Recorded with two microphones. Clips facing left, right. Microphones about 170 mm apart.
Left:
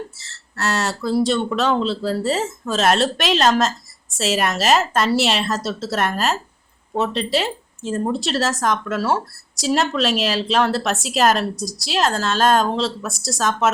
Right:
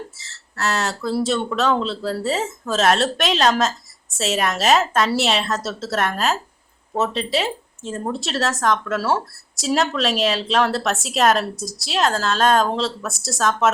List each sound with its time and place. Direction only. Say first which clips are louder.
0.5 s a woman's voice: left 1 dB; centre (ahead or behind)